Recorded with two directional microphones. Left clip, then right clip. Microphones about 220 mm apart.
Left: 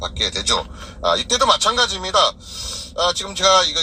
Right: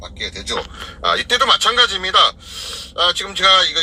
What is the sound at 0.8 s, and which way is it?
Speech, 45° right (ahead or behind).